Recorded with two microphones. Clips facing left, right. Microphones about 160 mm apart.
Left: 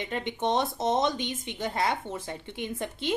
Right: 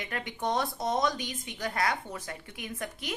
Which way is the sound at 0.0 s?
25° left (ahead or behind).